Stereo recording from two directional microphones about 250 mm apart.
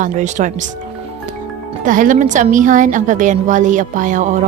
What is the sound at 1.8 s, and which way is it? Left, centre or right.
Speech, right.